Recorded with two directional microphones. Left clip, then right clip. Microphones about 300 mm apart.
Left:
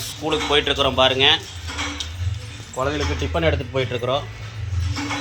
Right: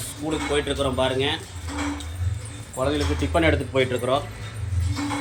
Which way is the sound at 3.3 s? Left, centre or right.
Left.